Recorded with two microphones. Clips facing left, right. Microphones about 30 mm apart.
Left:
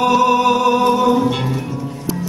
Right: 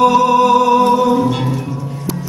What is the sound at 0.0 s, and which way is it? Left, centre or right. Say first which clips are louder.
Music: right 3 dB; centre.